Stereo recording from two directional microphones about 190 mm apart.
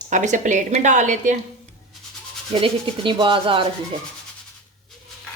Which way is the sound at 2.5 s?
30° right (ahead or behind).